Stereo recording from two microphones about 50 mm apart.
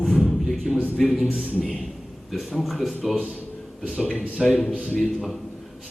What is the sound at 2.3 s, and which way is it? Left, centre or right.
Speech, centre.